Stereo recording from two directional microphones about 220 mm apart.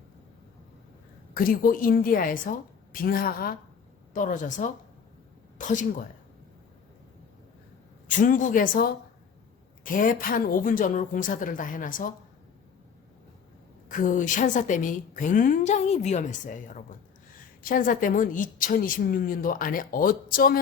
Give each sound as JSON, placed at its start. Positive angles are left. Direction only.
{"t": 1.3, "sound": "a woman's voice", "side_deg": 40}
{"t": 8.0, "sound": "a woman's voice", "side_deg": 35}
{"t": 13.8, "sound": "a woman's voice", "side_deg": 35}